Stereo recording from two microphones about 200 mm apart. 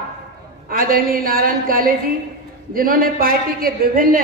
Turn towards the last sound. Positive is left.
turn(degrees=-45)  # may be behind; listen again after turning